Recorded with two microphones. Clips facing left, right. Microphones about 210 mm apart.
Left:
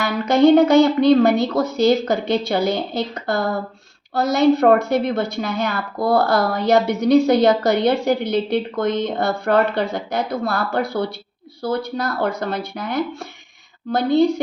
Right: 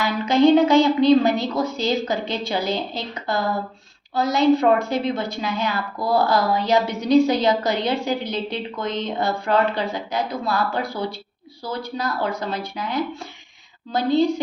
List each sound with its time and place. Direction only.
0.3 s a woman's voice: 55° left (ahead or behind)
4.1 s a woman's voice: 65° left (ahead or behind)